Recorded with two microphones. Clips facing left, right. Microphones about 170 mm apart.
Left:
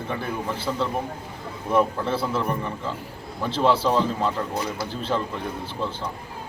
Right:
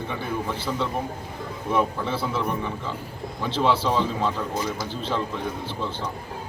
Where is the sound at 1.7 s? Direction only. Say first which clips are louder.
Left 3 dB; centre (ahead or behind).